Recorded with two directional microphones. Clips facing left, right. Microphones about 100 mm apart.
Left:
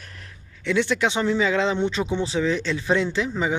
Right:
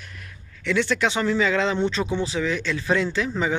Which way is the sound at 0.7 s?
20° left (ahead or behind).